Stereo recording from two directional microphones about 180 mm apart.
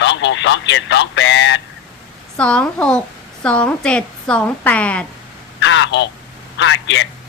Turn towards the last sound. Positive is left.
turn(degrees=90)